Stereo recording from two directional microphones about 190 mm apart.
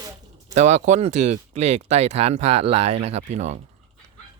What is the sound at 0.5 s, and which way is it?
Speech, 40° right (ahead or behind).